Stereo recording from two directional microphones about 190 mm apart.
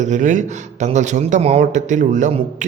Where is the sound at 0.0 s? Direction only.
40° right (ahead or behind).